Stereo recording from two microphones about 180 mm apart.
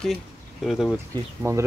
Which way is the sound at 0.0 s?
Centre (ahead or behind).